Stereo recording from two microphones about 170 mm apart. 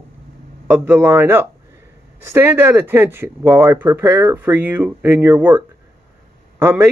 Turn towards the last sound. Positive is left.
turn(degrees=-10)  # may be behind; listen again after turning